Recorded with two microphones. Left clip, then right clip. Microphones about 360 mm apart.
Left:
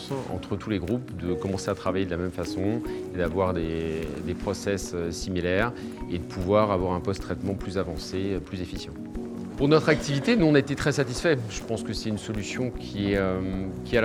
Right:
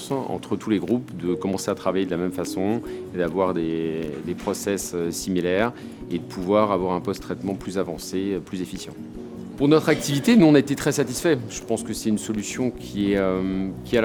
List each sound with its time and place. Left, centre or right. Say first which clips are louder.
0.5 s speech: right 6 dB; left
2.9 s speech: right 3 dB; left
9.6 s speech: right 3 dB; left
13.9 s speech: right 3 dB; left